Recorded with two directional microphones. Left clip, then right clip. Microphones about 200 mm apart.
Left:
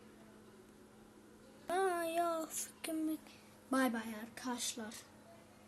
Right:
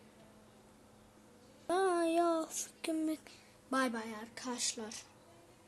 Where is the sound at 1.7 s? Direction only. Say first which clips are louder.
Right 4 dB; 15° right (ahead or behind).